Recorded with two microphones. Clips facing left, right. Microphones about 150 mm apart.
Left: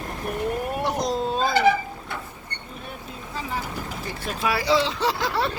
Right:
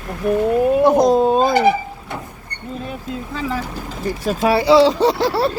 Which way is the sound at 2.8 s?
90° right.